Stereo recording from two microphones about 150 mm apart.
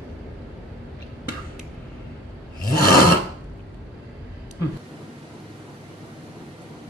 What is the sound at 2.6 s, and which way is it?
Filing, 80° left.